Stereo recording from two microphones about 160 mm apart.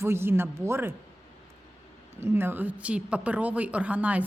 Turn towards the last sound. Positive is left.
turn(degrees=-10)  # may be behind; listen again after turning